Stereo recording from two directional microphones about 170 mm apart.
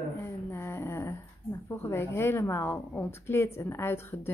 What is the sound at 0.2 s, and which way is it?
A woman's voice, 15° left (ahead or behind).